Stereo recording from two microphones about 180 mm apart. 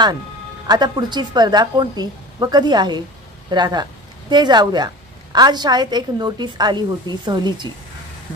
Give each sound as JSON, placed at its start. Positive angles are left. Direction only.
{"t": 0.7, "sound": "a woman's voice", "side_deg": -20}